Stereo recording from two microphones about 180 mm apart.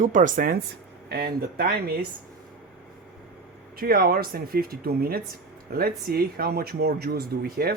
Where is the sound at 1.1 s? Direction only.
55° right (ahead or behind).